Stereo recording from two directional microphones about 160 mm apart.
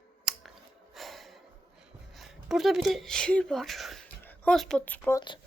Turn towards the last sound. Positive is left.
turn(degrees=10)  # may be behind; listen again after turning